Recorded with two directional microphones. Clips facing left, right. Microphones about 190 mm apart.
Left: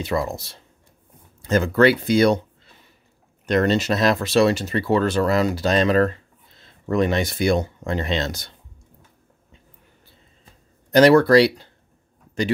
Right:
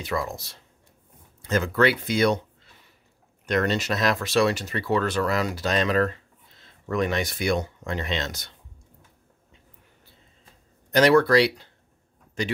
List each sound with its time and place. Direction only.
0.0 s speech: 25° left (ahead or behind)
10.9 s speech: 35° left (ahead or behind)